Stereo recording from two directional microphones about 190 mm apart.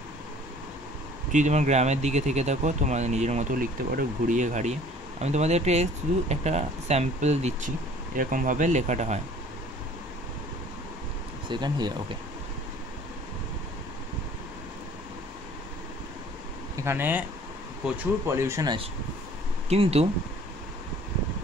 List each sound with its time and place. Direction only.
1.3 s speech: 40° right (ahead or behind)
11.4 s speech: 25° right (ahead or behind)
16.7 s speech: 10° right (ahead or behind)
19.7 s speech: 35° right (ahead or behind)